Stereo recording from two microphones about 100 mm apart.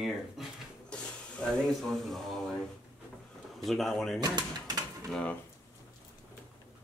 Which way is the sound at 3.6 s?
Centre (ahead or behind).